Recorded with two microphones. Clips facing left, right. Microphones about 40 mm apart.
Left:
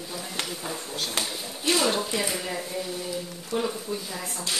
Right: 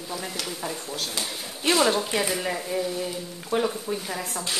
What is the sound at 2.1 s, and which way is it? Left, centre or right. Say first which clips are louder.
Speech: right 2 dB; right.